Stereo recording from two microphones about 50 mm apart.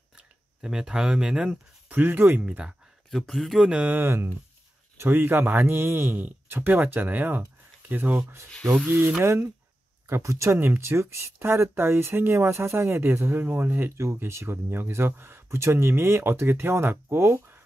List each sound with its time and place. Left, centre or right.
0.6 s speech: centre
1.9 s speech: right
2.4 s speech: centre
3.1 s speech: centre
3.7 s speech: right
4.0 s speech: right
6.1 s speech: right
8.2 s speech: right
10.0 s speech: right
13.4 s speech: right
14.1 s speech: right